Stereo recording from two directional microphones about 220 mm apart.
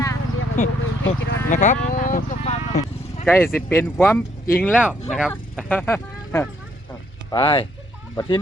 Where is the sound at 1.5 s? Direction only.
35° left (ahead or behind).